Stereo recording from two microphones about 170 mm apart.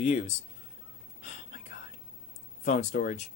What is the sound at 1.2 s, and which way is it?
Whispering, 50° left (ahead or behind).